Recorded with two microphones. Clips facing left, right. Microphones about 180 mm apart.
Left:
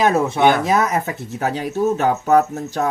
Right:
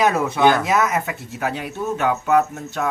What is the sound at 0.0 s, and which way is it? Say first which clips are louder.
Speech: left 2 dB; 25° left (ahead or behind).